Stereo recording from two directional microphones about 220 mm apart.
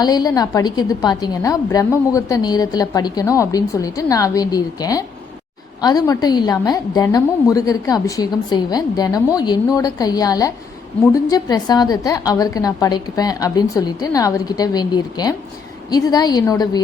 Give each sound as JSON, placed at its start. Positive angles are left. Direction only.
{"t": 0.0, "sound": "a woman's voice", "side_deg": 20}